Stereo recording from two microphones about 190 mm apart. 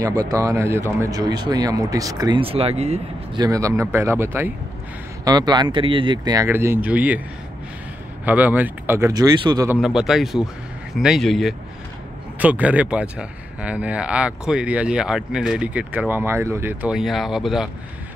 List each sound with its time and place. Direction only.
0.0 s speech: 20° right (ahead or behind); by 3.0 s 35° right (ahead or behind)
3.3 s speech: 20° right (ahead or behind)
8.3 s speech: 10° right (ahead or behind)
9.7 s speech: 5° right (ahead or behind)